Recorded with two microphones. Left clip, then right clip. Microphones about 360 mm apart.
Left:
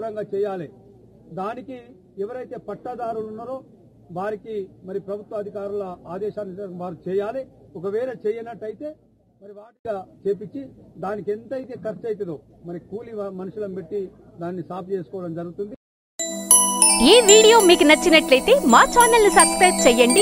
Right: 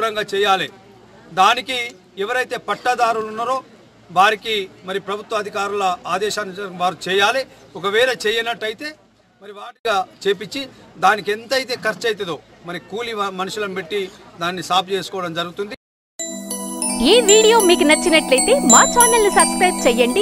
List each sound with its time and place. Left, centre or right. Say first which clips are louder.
0.0 s a man's voice: right 7 dB; centre
16.2 s speech: left 6 dB; centre